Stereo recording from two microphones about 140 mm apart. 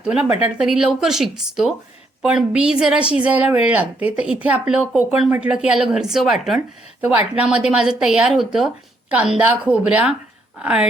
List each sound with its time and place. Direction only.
0.0 s speech: 10° right (ahead or behind)
0.3 s speech: 45° left (ahead or behind)
0.6 s a woman's voice: 5° right (ahead or behind)